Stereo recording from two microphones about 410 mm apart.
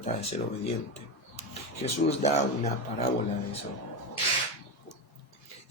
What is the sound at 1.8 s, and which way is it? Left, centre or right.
Speech, centre.